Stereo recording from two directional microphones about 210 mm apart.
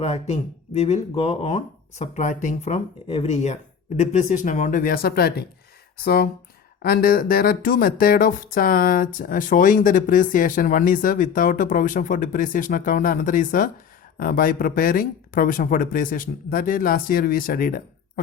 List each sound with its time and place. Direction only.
0.0 s speech: 30° left (ahead or behind); by 5.5 s 45° left (ahead or behind)
6.8 s speech: 45° left (ahead or behind)